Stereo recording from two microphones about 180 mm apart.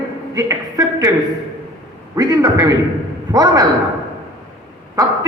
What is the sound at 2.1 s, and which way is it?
A man's voice, 20° right (ahead or behind).